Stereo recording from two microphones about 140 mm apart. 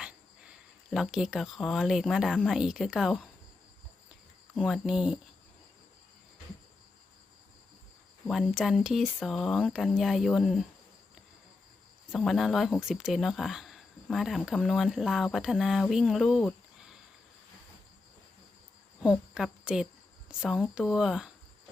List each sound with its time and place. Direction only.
0.0 s speech: 5° right (ahead or behind)
4.5 s speech: centre (ahead or behind)
8.3 s speech: centre (ahead or behind)
12.1 s speech: centre (ahead or behind)
19.0 s a woman's voice: 5° right (ahead or behind)